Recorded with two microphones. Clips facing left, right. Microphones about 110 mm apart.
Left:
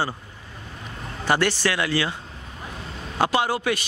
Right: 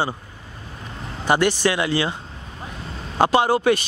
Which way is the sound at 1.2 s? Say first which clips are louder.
Right 3 dB; 15° right (ahead or behind).